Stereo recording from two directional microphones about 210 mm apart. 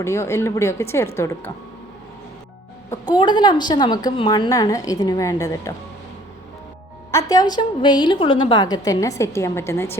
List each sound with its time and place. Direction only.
0.0 s a woman's voice: 15° left (ahead or behind)
3.1 s a woman's voice: 20° left (ahead or behind)
7.1 s a woman's voice: 15° left (ahead or behind)